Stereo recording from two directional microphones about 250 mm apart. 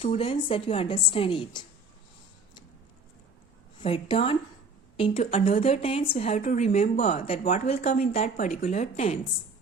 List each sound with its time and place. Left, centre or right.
0.0 s speech: left
3.8 s speech: left